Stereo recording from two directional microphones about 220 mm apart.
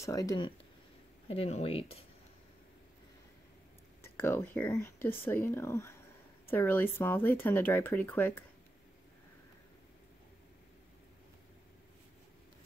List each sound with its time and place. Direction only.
0.0 s speech: 15° left (ahead or behind)
1.3 s speech: 25° left (ahead or behind)
4.0 s speech: 10° left (ahead or behind)